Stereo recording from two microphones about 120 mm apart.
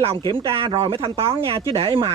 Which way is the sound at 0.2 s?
50° right (ahead or behind).